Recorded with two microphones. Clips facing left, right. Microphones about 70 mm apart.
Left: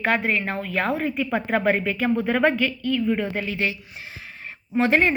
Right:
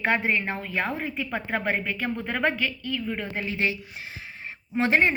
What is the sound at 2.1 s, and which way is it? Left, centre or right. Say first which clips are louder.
Speech: left 8 dB; left.